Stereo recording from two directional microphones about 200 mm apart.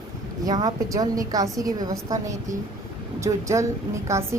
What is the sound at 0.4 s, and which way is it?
A woman's voice, 20° right (ahead or behind).